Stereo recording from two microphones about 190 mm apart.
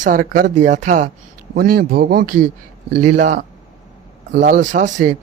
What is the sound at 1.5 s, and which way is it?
A man's voice, 50° right (ahead or behind).